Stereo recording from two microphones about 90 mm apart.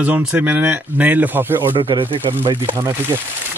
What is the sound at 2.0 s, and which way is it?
Speech, 70° right (ahead or behind).